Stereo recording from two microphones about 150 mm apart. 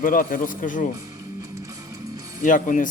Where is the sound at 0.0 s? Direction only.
65° left (ahead or behind).